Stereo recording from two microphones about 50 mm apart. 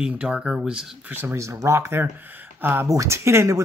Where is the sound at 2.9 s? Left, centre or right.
Right.